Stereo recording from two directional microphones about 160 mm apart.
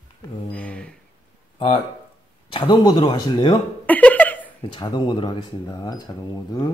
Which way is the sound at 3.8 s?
10° left (ahead or behind).